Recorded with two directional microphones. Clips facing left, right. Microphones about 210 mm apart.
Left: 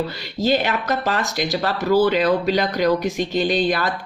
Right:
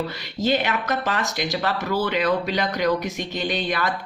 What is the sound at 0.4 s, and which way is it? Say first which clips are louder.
Speech: left 3 dB; 35° left (ahead or behind).